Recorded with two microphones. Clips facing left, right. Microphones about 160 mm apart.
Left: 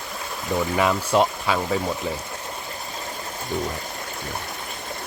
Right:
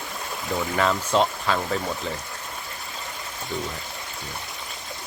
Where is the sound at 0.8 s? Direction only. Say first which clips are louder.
Left 1 dB; 10° left (ahead or behind).